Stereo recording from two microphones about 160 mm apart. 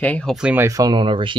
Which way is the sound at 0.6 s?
20° right (ahead or behind).